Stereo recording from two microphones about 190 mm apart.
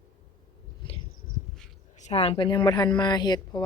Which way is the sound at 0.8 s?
25° left (ahead or behind).